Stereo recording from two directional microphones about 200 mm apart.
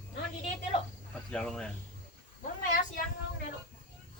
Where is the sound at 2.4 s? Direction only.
40° left (ahead or behind).